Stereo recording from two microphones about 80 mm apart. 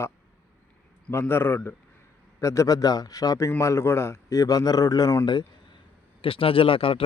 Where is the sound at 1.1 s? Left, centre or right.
Left.